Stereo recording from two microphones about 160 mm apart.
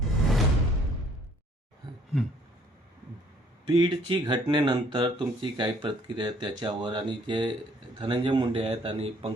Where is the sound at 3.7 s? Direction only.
30° right (ahead or behind).